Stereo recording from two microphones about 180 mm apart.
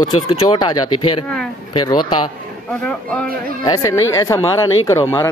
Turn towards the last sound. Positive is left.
turn(degrees=15)  # may be behind; listen again after turning